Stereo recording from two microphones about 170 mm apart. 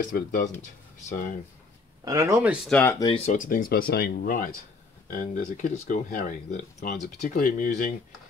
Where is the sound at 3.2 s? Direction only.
50° left (ahead or behind).